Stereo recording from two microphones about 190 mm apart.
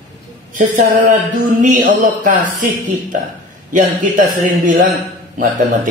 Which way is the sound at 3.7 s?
45° right (ahead or behind).